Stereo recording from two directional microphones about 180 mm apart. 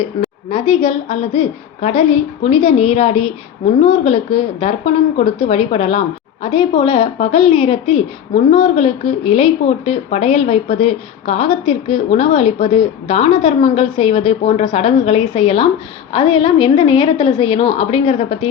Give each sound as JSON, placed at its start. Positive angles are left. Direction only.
{"t": 0.0, "sound": "a woman's voice", "side_deg": 35}